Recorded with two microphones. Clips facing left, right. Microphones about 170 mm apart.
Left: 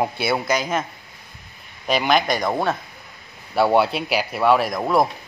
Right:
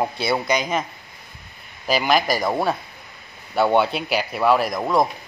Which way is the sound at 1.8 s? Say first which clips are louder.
Even; centre (ahead or behind).